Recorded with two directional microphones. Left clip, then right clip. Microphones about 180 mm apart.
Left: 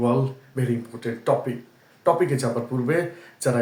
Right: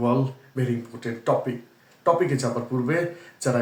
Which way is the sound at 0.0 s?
15° left (ahead or behind).